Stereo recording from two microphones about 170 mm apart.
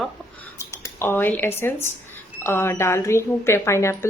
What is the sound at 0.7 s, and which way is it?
A woman's voice, 15° left (ahead or behind).